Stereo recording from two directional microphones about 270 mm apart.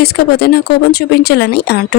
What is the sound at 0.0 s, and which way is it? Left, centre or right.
Speech, left.